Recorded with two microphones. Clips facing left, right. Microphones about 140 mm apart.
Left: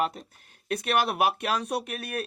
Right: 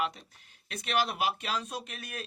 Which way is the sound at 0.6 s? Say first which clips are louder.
Left 5 dB; 55° left (ahead or behind).